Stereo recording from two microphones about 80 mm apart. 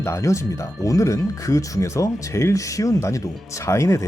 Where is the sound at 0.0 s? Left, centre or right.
Left.